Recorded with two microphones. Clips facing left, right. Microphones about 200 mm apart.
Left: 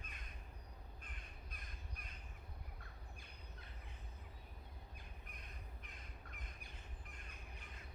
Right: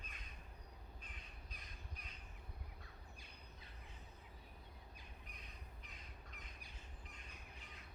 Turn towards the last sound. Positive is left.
turn(degrees=50)  # may be behind; listen again after turning